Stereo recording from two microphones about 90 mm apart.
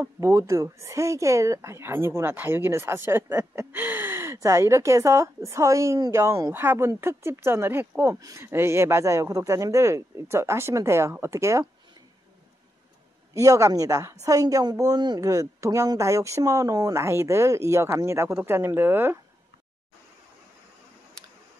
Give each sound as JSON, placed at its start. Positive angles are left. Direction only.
{"t": 0.0, "sound": "speech", "side_deg": -35}
{"t": 13.3, "sound": "speech", "side_deg": -35}
{"t": 15.1, "sound": "speech", "side_deg": -35}